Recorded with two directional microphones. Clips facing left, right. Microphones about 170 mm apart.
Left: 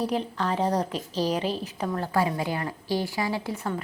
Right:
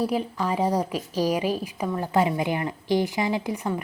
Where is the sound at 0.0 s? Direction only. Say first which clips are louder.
Right 2 dB; 10° right (ahead or behind).